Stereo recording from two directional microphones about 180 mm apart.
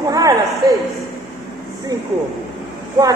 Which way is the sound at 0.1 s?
20° right (ahead or behind).